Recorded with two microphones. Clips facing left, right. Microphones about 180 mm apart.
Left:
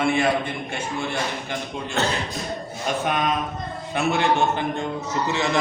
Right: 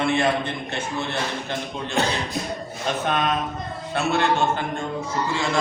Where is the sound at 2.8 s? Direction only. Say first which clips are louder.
Even; 10° left (ahead or behind).